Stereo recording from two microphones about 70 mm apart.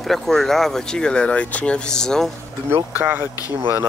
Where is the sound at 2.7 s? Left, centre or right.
Right.